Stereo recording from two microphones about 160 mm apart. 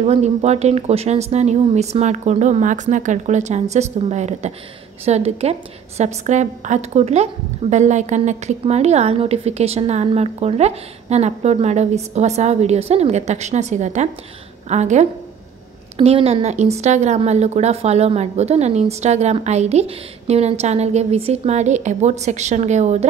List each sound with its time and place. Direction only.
0.0 s a woman's voice: 40° right (ahead or behind)